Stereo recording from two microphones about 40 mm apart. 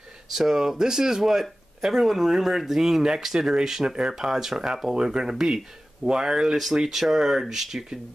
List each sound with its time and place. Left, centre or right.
0.3 s speech: centre